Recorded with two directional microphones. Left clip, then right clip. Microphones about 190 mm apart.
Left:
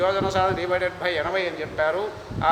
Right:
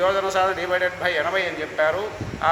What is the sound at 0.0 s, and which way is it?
A man's voice, 25° left (ahead or behind).